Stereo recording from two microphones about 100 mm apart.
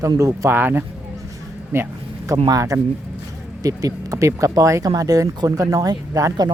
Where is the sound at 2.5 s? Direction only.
35° right (ahead or behind).